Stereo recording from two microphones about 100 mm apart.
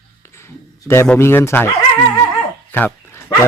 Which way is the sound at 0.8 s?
25° left (ahead or behind).